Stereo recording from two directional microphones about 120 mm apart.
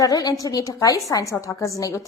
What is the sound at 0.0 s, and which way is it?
A woman's voice, 30° left (ahead or behind).